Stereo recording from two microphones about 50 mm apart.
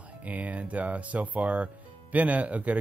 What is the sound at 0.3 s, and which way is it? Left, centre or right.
Speech, right.